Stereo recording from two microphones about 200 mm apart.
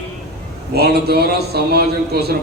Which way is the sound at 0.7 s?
50° right (ahead or behind).